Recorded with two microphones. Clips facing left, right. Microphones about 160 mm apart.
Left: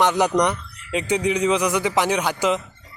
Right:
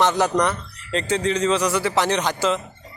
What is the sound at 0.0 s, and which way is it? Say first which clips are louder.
Speech: left 1 dB; 15° left (ahead or behind).